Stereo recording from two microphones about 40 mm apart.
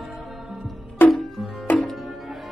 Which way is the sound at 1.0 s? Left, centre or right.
Left.